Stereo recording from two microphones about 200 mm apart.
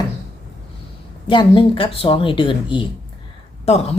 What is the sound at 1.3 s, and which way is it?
Speech, 25° left (ahead or behind).